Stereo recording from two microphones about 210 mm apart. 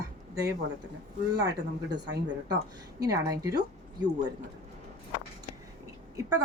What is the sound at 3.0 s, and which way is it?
Speech, 15° right (ahead or behind).